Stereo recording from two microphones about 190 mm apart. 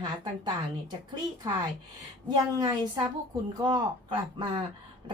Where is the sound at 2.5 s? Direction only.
20° right (ahead or behind).